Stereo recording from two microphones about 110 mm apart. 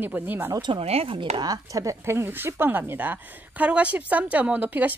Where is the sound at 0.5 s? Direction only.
45° right (ahead or behind).